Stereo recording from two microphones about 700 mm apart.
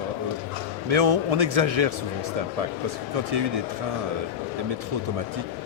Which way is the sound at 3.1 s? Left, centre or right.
Right.